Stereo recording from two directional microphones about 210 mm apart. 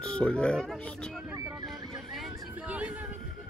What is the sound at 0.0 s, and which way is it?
Speech, 5° left (ahead or behind).